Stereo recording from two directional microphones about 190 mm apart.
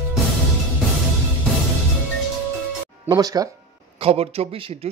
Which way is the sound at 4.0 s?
30° right (ahead or behind).